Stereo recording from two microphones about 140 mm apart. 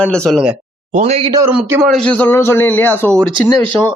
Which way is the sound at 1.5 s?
10° right (ahead or behind).